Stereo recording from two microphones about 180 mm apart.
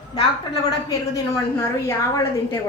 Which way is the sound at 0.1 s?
20° left (ahead or behind).